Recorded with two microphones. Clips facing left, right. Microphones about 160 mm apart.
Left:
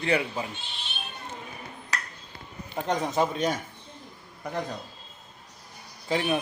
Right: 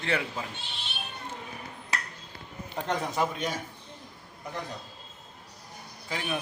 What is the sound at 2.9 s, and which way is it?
Speech, 15° left (ahead or behind).